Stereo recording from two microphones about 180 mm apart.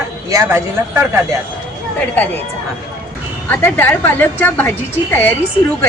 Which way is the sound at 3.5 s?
10° left (ahead or behind).